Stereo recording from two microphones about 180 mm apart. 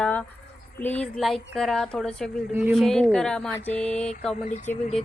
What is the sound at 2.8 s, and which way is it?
A woman's voice, 5° left (ahead or behind).